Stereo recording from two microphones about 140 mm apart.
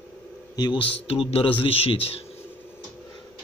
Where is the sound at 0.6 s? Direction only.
35° left (ahead or behind).